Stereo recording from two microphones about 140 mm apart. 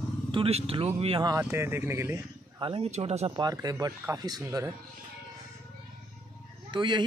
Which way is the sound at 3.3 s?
25° right (ahead or behind).